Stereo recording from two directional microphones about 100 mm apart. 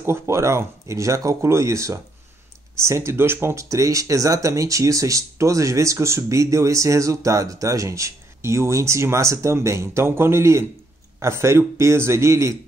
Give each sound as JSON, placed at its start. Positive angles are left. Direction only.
{"t": 0.0, "sound": "speech", "side_deg": -25}